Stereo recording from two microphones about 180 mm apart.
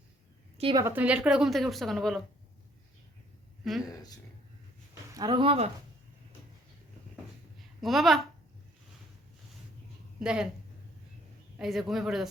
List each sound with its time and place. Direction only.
0.6 s speech: 25° right (ahead or behind)
0.9 s speech: 10° right (ahead or behind)
3.6 s speech: centre (ahead or behind)
5.1 s speech: 25° right (ahead or behind)
7.8 s a woman's voice: centre (ahead or behind)
10.2 s speech: 5° right (ahead or behind)
11.5 s speech: centre (ahead or behind)